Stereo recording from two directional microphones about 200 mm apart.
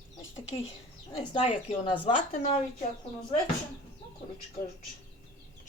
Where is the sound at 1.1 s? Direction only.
25° left (ahead or behind).